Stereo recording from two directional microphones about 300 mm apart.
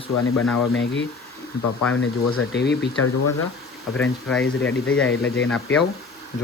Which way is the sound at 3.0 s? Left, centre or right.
Left.